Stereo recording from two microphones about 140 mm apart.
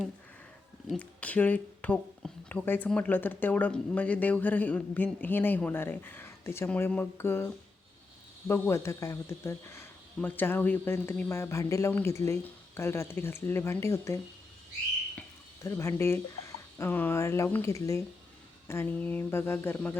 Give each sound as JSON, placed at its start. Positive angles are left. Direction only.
{"t": 0.9, "sound": "speech", "side_deg": 10}
{"t": 15.6, "sound": "speech", "side_deg": 20}